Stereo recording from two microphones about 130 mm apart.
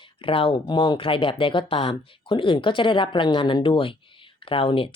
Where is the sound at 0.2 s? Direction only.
45° left (ahead or behind).